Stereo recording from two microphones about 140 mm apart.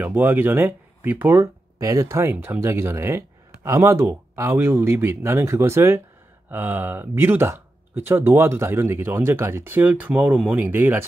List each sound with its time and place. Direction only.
0.0 s speech: 15° right (ahead or behind)